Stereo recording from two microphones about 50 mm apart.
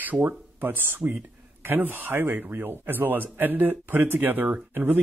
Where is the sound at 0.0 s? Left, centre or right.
Right.